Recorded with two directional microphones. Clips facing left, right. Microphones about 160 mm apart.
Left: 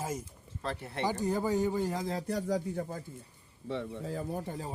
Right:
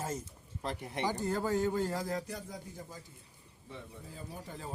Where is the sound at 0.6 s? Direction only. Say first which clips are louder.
Left 1 dB; 15° right (ahead or behind).